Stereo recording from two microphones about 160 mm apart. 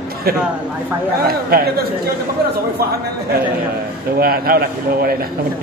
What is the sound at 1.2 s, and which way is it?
Speech, 70° right (ahead or behind).